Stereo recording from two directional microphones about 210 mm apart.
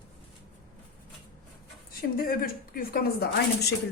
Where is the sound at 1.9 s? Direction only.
45° left (ahead or behind).